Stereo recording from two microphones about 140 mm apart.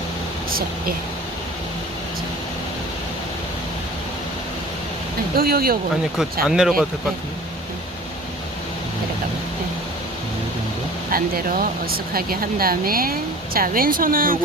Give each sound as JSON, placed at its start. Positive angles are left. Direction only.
{"t": 5.4, "sound": "speech", "side_deg": -90}
{"t": 6.5, "sound": "speech", "side_deg": -5}
{"t": 11.1, "sound": "speech", "side_deg": -90}